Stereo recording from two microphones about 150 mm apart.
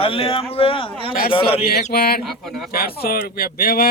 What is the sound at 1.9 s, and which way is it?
Speech, 90° left.